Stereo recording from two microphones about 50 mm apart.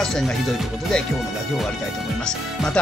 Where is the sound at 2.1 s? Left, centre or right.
Centre.